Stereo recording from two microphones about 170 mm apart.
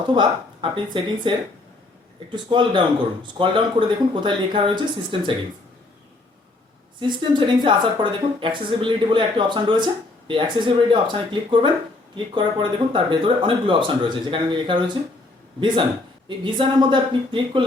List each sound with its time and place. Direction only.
0.0 s speech: 25° right (ahead or behind)
2.3 s speech: 30° right (ahead or behind)
7.1 s speech: 30° right (ahead or behind)
16.4 s speech: 30° right (ahead or behind)